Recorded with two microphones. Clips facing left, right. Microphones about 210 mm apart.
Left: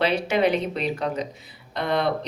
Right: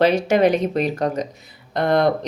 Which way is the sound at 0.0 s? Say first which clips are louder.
Right 6 dB; 45° right (ahead or behind).